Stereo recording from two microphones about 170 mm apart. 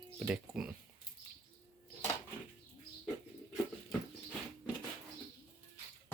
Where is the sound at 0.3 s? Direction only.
5° right (ahead or behind).